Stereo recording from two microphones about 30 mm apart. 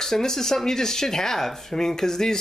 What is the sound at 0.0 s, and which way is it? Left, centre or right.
Speech, centre.